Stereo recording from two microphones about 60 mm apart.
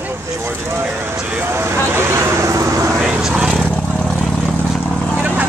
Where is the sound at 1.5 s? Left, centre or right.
Right.